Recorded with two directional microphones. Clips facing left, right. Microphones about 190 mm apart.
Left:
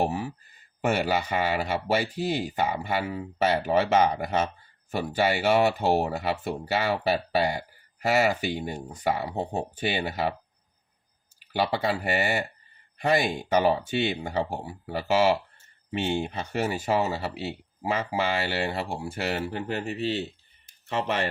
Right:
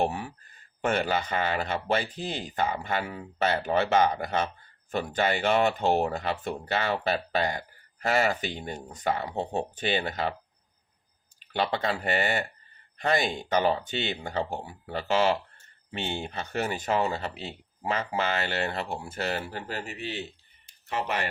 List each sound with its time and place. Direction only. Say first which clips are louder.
0.0 s speech: left 1 dB; 5° left (ahead or behind)
11.5 s speech: left 2 dB; 10° left (ahead or behind); by 21.2 s 25° left (ahead or behind)